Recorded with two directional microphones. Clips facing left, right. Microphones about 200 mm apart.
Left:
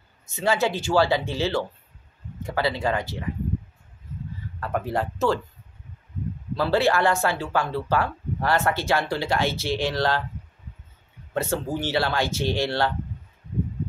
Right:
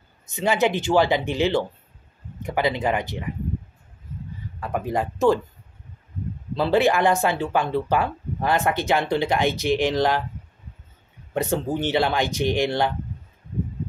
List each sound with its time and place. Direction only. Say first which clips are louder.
0.3 s speech: right 2 dB; 20° right (ahead or behind)
4.6 s speech: right 1 dB; 15° right (ahead or behind)
6.5 s speech: right 2 dB; 20° right (ahead or behind)
11.3 s speech: right 2 dB; 20° right (ahead or behind)